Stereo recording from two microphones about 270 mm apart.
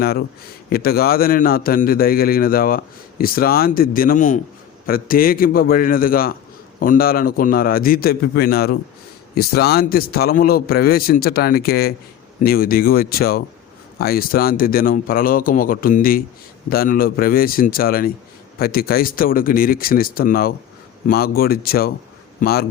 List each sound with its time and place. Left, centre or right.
0.0 s a man's voice: left